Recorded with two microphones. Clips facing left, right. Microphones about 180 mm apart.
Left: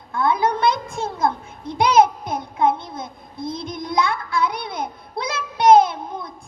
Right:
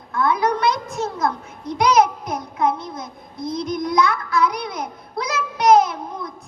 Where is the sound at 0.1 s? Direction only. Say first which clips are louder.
Even; 30° left (ahead or behind).